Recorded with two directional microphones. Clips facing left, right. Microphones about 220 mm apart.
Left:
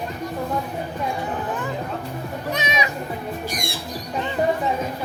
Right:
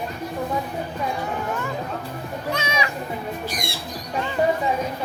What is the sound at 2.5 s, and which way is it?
Music, 20° left (ahead or behind).